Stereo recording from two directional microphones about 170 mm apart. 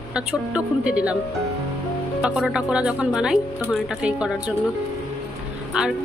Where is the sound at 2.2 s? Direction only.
5° right (ahead or behind).